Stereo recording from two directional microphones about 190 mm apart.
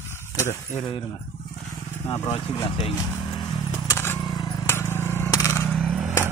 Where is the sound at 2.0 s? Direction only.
20° left (ahead or behind).